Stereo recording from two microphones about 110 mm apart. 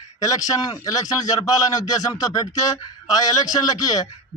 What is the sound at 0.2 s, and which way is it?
A man's voice, 35° left (ahead or behind).